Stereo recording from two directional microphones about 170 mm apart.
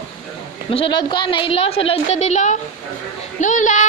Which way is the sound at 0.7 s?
30° left (ahead or behind).